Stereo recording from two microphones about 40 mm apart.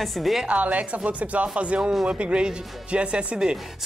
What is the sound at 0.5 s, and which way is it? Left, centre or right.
Speech, right.